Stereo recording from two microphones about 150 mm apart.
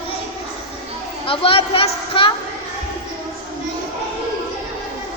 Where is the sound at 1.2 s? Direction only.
40° left (ahead or behind).